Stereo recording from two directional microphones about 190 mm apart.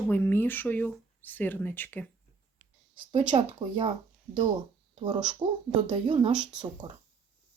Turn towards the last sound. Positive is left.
turn(degrees=-25)  # may be behind; listen again after turning